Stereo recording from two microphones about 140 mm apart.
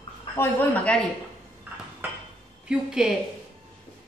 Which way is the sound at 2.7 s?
5° right (ahead or behind).